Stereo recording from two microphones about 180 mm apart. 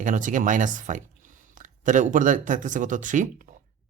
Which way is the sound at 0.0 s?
45° right (ahead or behind).